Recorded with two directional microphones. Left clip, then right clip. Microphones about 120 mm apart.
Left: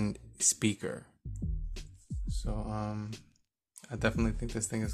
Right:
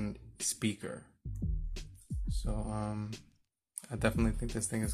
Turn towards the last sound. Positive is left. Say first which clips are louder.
# left 1 dB
turn(degrees=0)  # may be behind; listen again after turning